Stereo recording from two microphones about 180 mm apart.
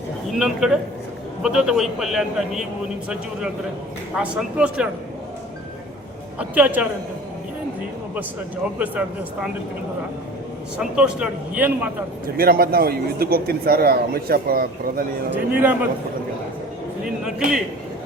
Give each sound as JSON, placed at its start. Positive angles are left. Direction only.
{"t": 0.3, "sound": "a man's voice", "side_deg": 0}
{"t": 4.1, "sound": "a man's voice", "side_deg": -5}
{"t": 6.4, "sound": "a man's voice", "side_deg": -10}
{"t": 8.8, "sound": "a man's voice", "side_deg": -5}
{"t": 10.8, "sound": "a man's voice", "side_deg": -5}
{"t": 12.4, "sound": "speech", "side_deg": -55}
{"t": 15.5, "sound": "a man's voice", "side_deg": -10}